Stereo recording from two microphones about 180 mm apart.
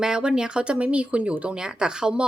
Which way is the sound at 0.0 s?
5° right (ahead or behind).